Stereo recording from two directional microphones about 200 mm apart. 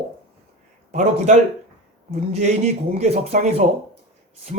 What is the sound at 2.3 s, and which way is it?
A man's voice, 35° right (ahead or behind).